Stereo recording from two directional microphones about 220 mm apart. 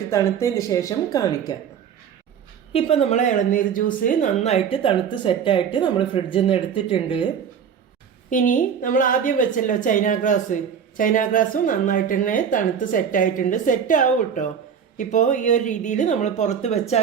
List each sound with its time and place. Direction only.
0.1 s speech: 15° left (ahead or behind)
2.7 s a woman's voice: 25° left (ahead or behind)
8.3 s a woman's voice: 35° left (ahead or behind)